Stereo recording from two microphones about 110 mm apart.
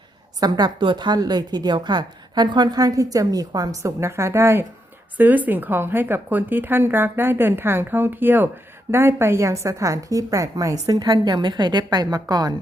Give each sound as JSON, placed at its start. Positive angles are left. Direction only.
{"t": 0.3, "sound": "a woman's voice", "side_deg": -35}